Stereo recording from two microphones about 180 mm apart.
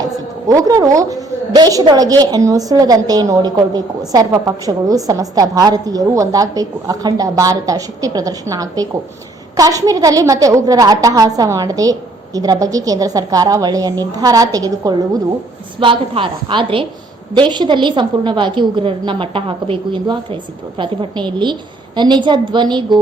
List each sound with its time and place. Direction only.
0.0 s a woman's voice: 20° right (ahead or behind)